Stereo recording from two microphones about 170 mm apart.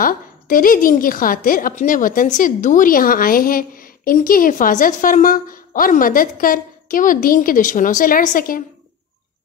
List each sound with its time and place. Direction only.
0.0 s a woman's voice: 55° left (ahead or behind)